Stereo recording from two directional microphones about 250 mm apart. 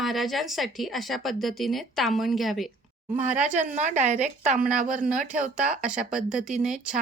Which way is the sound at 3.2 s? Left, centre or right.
Right.